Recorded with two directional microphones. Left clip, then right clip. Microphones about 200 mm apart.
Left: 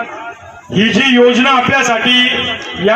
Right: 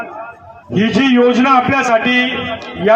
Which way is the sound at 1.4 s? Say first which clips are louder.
Left 1 dB; 50° left (ahead or behind).